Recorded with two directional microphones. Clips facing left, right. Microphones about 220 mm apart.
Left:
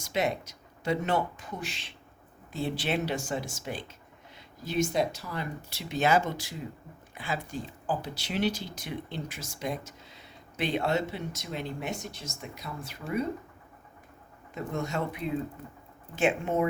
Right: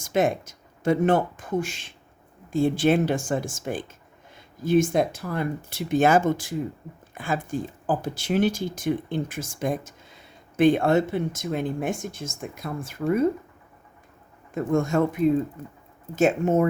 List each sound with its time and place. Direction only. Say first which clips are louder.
0.0 s speech: right 7 dB; 50° right (ahead or behind)
14.5 s speech: right 10 dB; 50° right (ahead or behind)